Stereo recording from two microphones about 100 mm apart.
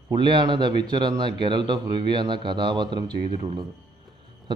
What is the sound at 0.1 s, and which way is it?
A man's voice, 50° right (ahead or behind).